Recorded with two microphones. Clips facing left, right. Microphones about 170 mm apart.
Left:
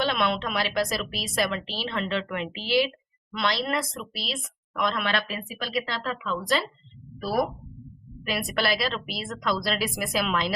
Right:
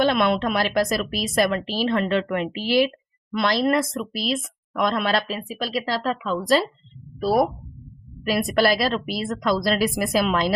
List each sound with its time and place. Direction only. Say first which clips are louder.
0.1 s a woman's voice: right 6 dB; 45° right (ahead or behind); by 7.4 s 25° right (ahead or behind)
8.3 s a woman's voice: right 7 dB; 40° right (ahead or behind)